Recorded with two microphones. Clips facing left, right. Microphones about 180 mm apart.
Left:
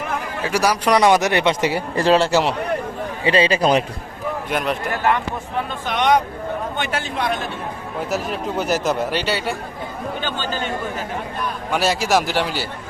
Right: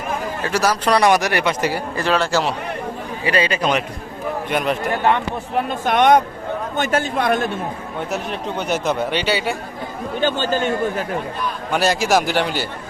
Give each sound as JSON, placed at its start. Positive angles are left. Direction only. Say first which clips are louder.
{"t": 0.4, "sound": "a man's voice", "louder": "left 1 dB", "side_deg": 10}
{"t": 4.4, "sound": "speech", "louder": "right 2 dB", "side_deg": 0}
{"t": 5.8, "sound": "speech", "louder": "right 4 dB", "side_deg": -50}
{"t": 7.9, "sound": "speech", "louder": "left 2 dB", "side_deg": 0}
{"t": 10.2, "sound": "speech", "louder": "right 8 dB", "side_deg": -50}
{"t": 11.7, "sound": "speech", "louder": "right 1 dB", "side_deg": 0}